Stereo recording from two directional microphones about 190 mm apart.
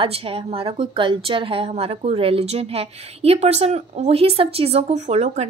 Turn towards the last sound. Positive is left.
turn(degrees=-35)  # may be behind; listen again after turning